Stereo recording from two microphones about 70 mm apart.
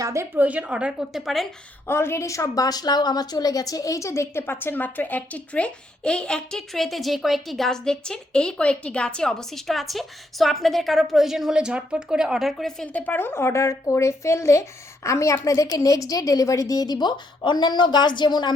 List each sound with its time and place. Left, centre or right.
0.0 s a woman's voice: right
0.3 s a woman's voice: centre
1.1 s speech: centre
1.9 s a woman's voice: left; by 12.7 s centre
12.8 s a woman's voice: left